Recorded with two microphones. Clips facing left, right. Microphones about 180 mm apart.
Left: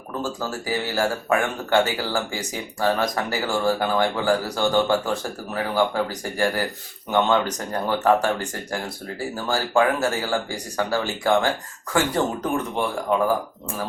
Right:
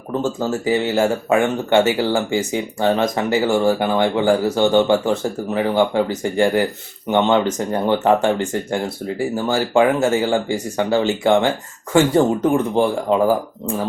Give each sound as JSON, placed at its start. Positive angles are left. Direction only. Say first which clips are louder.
{"t": 0.2, "sound": "speech", "louder": "right 7 dB", "side_deg": -25}